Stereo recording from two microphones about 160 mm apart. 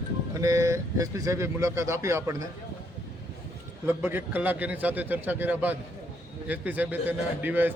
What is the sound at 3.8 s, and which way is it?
A man's voice, 10° right (ahead or behind).